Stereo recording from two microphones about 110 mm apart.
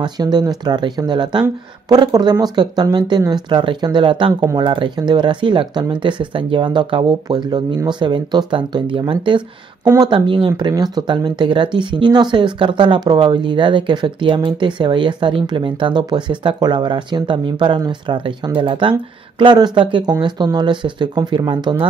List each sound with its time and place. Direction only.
0.0 s speech: 40° right (ahead or behind)